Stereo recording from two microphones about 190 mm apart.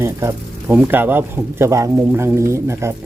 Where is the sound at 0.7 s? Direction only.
10° right (ahead or behind).